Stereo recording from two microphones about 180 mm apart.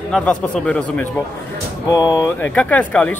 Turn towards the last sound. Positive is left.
turn(degrees=10)  # may be behind; listen again after turning